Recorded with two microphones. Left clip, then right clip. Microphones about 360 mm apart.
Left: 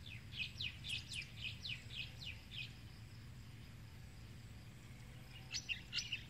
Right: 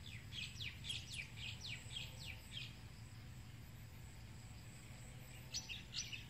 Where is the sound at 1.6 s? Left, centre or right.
Centre.